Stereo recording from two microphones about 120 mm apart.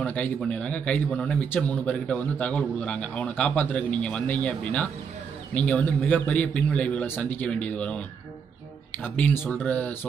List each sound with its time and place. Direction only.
0.0 s a man's voice: 10° left (ahead or behind)
9.0 s a man's voice: 15° left (ahead or behind)